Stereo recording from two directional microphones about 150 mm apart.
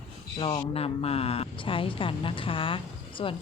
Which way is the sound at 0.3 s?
40° left (ahead or behind).